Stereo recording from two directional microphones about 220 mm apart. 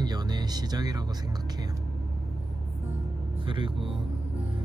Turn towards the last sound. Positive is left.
turn(degrees=-20)  # may be behind; listen again after turning